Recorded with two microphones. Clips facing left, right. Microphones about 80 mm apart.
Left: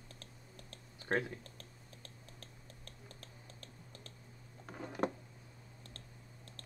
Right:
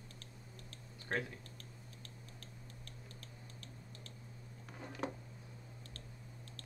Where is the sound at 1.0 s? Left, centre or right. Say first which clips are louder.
Left 4 dB; left.